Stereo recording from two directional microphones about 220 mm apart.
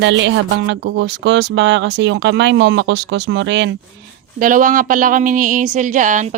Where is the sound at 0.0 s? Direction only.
55° right (ahead or behind).